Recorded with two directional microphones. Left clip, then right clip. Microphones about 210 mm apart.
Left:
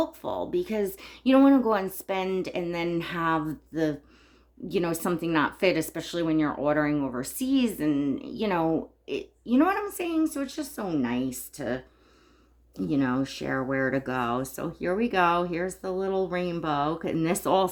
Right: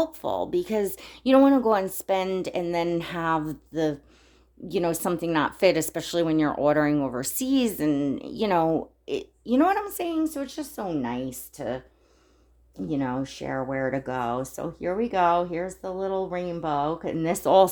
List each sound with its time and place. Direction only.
0.0 s speech: 35° right (ahead or behind)
12.9 s speech: 15° right (ahead or behind)